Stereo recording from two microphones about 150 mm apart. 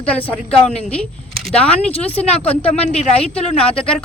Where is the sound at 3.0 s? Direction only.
40° left (ahead or behind).